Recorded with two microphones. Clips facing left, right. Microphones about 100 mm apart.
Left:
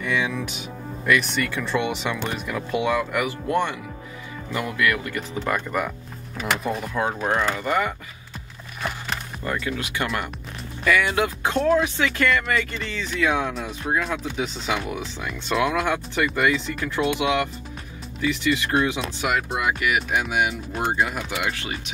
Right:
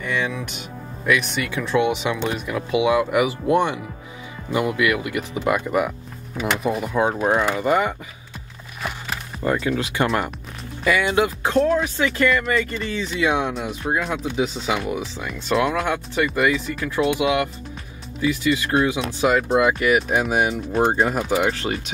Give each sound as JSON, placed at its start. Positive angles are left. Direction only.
{"t": 0.0, "sound": "speech", "side_deg": 0}
{"t": 6.3, "sound": "speech", "side_deg": 0}
{"t": 6.9, "sound": "speech", "side_deg": -15}
{"t": 7.6, "sound": "speech", "side_deg": -20}
{"t": 8.8, "sound": "music", "side_deg": -5}
{"t": 9.4, "sound": "speech", "side_deg": -30}
{"t": 10.8, "sound": "speech", "side_deg": -15}
{"t": 11.1, "sound": "speech", "side_deg": -5}
{"t": 19.2, "sound": "speech", "side_deg": -30}